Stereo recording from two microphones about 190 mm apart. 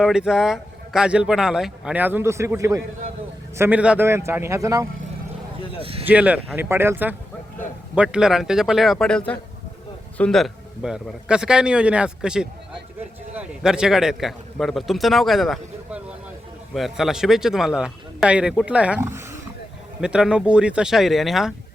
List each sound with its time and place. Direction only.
0.0 s a man's voice: 5° right (ahead or behind)
5.8 s speech: 30° right (ahead or behind)
6.1 s a man's voice: 10° right (ahead or behind)